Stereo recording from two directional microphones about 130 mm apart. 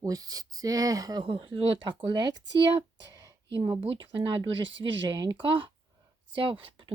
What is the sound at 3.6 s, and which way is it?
Speech, 40° right (ahead or behind).